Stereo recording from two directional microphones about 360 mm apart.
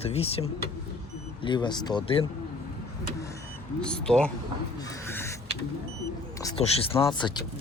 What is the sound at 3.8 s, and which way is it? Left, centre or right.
Speech, centre.